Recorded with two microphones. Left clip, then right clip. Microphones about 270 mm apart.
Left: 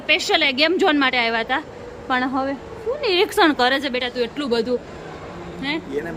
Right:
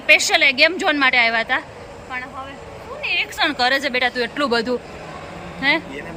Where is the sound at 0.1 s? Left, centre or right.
Centre.